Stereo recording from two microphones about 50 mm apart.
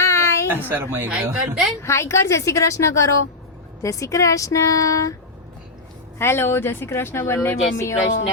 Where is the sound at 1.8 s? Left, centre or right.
Left.